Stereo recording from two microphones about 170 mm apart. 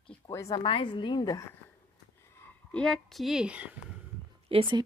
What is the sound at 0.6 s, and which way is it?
Speech, 30° left (ahead or behind).